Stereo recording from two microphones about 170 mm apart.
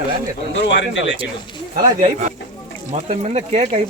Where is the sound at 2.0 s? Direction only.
45° right (ahead or behind).